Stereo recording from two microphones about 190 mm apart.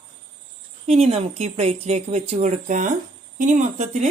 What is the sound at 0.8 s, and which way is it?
Speech, 35° right (ahead or behind).